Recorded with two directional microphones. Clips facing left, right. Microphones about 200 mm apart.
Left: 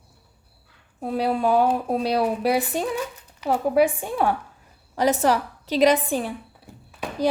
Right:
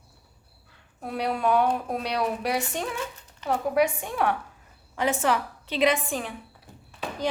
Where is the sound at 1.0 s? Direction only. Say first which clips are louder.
Left 4 dB; 30° left (ahead or behind).